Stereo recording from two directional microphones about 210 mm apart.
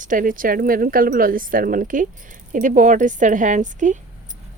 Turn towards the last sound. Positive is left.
turn(degrees=-35)  # may be behind; listen again after turning